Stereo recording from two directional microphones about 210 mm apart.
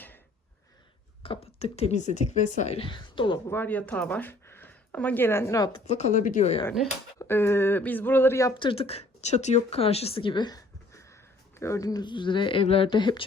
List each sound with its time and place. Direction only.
1.2 s speech: 25° left (ahead or behind)
3.5 s speech: 10° left (ahead or behind)
6.0 s speech: 35° left (ahead or behind)
7.2 s speech: 10° left (ahead or behind)